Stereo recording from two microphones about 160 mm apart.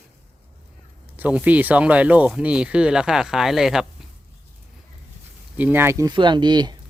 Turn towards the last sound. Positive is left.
turn(degrees=-25)  # may be behind; listen again after turning